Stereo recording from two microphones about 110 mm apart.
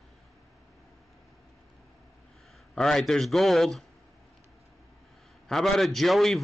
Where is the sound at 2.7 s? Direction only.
5° left (ahead or behind).